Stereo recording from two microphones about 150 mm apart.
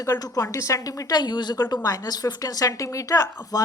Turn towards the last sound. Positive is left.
turn(degrees=20)  # may be behind; listen again after turning